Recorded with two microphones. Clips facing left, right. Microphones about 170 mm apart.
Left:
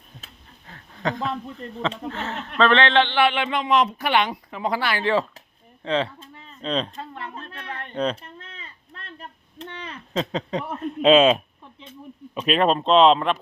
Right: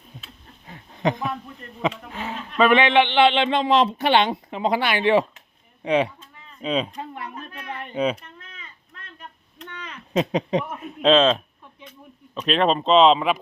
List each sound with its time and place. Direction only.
0.7 s a sound: 20° right (ahead or behind)
1.6 s speech: 30° left (ahead or behind)
2.0 s speech: 10° right (ahead or behind)
8.2 s a sound: 30° left (ahead or behind)
10.2 s speech: 15° right (ahead or behind)
10.8 s speech: 5° right (ahead or behind)
12.5 s speech: centre (ahead or behind)